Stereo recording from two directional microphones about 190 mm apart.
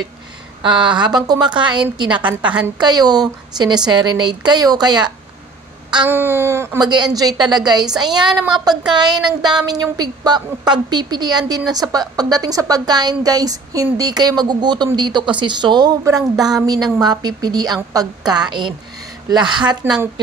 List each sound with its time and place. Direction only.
0.6 s a woman's voice: 25° right (ahead or behind)
2.2 s speech: 5° right (ahead or behind)
2.8 s a woman's voice: 20° right (ahead or behind)
6.0 s a woman's voice: 10° right (ahead or behind)
19.8 s speech: 10° right (ahead or behind)